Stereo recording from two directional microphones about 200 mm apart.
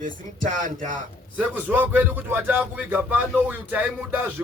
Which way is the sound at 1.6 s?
10° right (ahead or behind).